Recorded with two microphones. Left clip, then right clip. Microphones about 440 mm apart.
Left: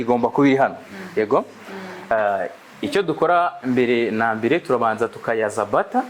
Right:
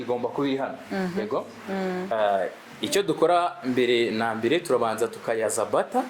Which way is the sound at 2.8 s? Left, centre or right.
Left.